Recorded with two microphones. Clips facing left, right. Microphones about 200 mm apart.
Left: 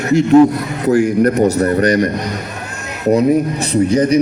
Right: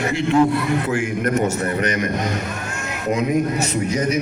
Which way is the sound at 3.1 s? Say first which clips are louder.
Left 6 dB; 35° left (ahead or behind).